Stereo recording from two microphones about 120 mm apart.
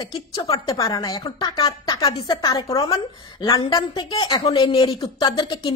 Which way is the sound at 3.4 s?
40° left (ahead or behind).